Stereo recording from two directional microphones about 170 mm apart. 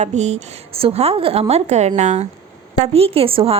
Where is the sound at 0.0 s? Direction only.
40° right (ahead or behind).